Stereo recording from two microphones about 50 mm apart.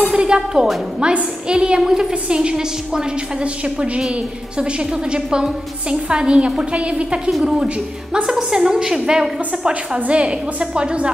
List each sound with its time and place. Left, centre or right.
0.1 s a woman's voice: centre
9.9 s a woman's voice: right